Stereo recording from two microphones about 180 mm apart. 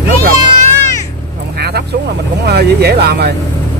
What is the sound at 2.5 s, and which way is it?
Speech, 65° right (ahead or behind).